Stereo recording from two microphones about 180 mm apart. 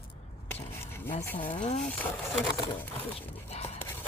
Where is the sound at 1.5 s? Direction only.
40° left (ahead or behind).